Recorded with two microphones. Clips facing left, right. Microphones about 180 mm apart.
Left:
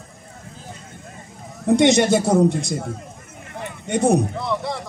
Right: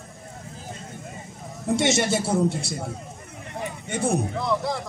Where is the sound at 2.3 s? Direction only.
40° left (ahead or behind).